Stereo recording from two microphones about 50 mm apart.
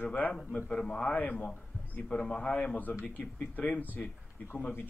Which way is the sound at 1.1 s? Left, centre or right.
Left.